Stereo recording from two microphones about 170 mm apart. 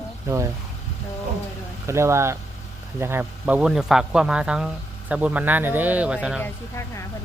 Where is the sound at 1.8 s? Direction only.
15° right (ahead or behind).